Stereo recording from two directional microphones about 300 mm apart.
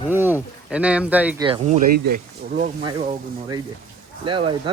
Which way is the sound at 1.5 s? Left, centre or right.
Right.